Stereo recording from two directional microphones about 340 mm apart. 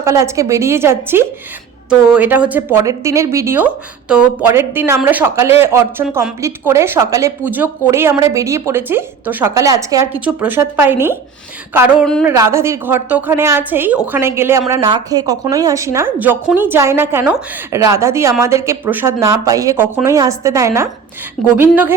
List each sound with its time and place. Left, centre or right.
0.0 s a woman's voice: centre